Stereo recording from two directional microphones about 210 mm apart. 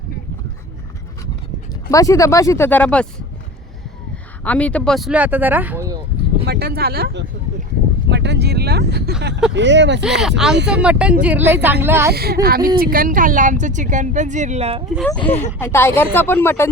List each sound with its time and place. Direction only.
1.9 s speech: 15° left (ahead or behind)
4.4 s speech: 5° left (ahead or behind); by 6.0 s 10° right (ahead or behind)
6.4 s speech: 50° right (ahead or behind)
10.2 s speech: centre (ahead or behind)
12.1 s a woman's voice: 50° right (ahead or behind); by 14.8 s 30° right (ahead or behind)
14.9 s speech: 5° left (ahead or behind)
15.2 s speech: 30° left (ahead or behind)
15.6 s speech: 10° left (ahead or behind)